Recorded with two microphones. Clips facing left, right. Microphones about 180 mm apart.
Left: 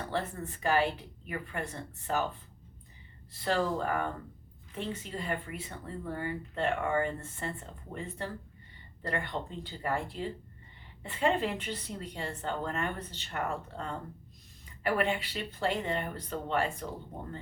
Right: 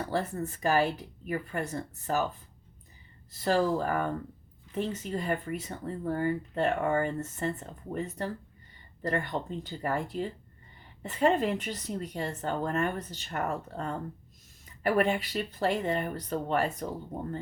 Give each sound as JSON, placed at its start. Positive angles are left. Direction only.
{"t": 0.1, "sound": "speech", "side_deg": -40}
{"t": 3.3, "sound": "speech", "side_deg": -40}